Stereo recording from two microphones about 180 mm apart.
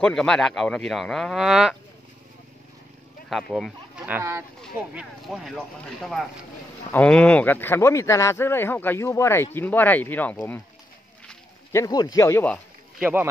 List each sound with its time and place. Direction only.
0.0 s a man's voice: 5° left (ahead or behind)
3.3 s speech: centre (ahead or behind)
4.0 s speech: 15° right (ahead or behind)
4.6 s a man's voice: centre (ahead or behind)
11.7 s speech: 20° left (ahead or behind)
13.0 s speech: 10° right (ahead or behind)